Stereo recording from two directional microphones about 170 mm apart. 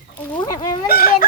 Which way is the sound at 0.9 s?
60° left (ahead or behind).